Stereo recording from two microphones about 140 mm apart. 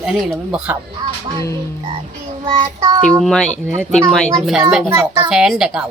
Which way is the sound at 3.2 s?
5° left (ahead or behind).